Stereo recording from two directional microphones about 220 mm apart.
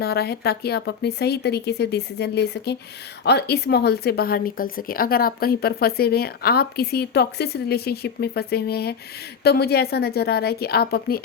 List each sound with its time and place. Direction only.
0.0 s a woman's voice: 45° left (ahead or behind)